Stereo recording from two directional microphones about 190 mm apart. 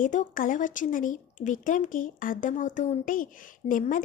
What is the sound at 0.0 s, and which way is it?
Speech, 45° left (ahead or behind).